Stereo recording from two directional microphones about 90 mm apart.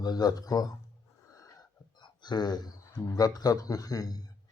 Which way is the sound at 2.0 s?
55° left (ahead or behind).